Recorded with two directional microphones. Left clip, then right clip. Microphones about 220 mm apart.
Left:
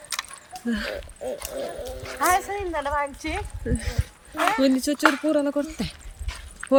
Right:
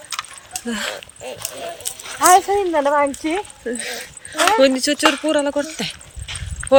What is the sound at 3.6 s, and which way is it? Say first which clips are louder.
A man's voice: right 6 dB; 5° left (ahead or behind).